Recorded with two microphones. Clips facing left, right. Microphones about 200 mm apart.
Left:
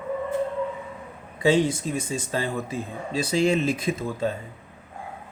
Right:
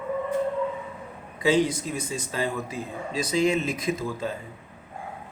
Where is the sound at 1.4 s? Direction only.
25° left (ahead or behind).